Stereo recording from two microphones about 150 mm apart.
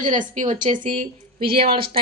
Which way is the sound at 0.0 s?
55° right (ahead or behind).